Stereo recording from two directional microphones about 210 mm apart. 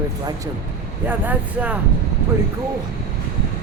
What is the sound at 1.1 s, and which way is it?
Speech, 5° right (ahead or behind).